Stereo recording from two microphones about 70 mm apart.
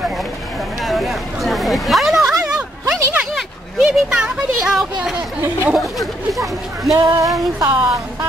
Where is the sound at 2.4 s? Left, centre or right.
Centre.